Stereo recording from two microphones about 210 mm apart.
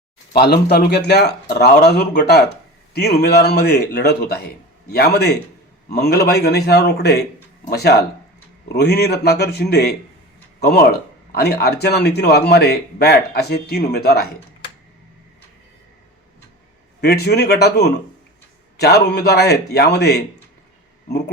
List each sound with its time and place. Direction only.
0.3 s speech: 50° left (ahead or behind)
11.3 s speech: 50° left (ahead or behind)
17.0 s speech: 50° left (ahead or behind)